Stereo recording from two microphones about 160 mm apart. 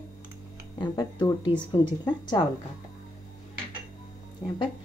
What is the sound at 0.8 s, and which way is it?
Speech, 25° left (ahead or behind).